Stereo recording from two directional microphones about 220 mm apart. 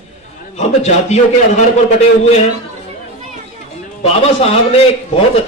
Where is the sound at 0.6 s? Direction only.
30° left (ahead or behind).